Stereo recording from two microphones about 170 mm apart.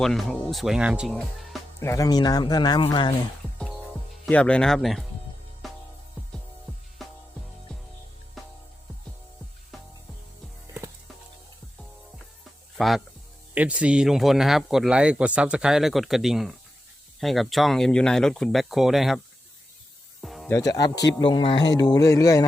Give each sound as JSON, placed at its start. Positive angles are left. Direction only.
{"t": 0.0, "sound": "speech", "side_deg": 0}
{"t": 1.8, "sound": "speech", "side_deg": 20}
{"t": 4.3, "sound": "speech", "side_deg": 5}
{"t": 5.6, "sound": "music", "side_deg": 0}
{"t": 7.0, "sound": "music", "side_deg": 0}
{"t": 12.7, "sound": "speech", "side_deg": 0}
{"t": 20.2, "sound": "music", "side_deg": 0}
{"t": 20.5, "sound": "speech", "side_deg": 20}